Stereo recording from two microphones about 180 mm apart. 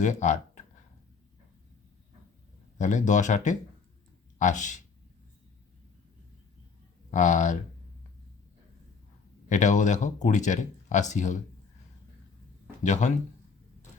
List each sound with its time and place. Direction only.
0.0 s speech: 40° left (ahead or behind)
2.7 s speech: 40° left (ahead or behind)
7.1 s speech: 40° left (ahead or behind)
9.5 s speech: 40° left (ahead or behind)
12.8 s speech: 40° left (ahead or behind)